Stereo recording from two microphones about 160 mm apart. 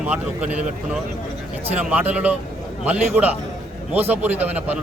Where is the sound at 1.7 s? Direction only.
10° right (ahead or behind).